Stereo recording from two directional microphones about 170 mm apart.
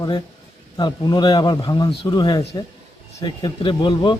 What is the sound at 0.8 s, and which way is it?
Speech, 25° left (ahead or behind).